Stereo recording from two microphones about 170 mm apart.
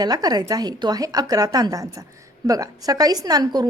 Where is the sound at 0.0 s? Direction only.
25° right (ahead or behind).